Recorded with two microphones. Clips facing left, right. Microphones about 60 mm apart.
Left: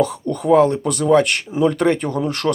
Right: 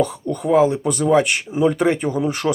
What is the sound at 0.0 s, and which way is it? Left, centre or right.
Speech, centre.